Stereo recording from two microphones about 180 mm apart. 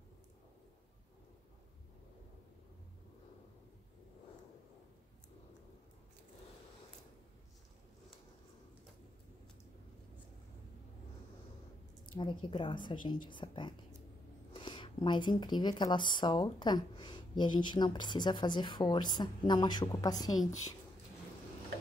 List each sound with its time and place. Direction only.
12.1 s speech: 25° left (ahead or behind)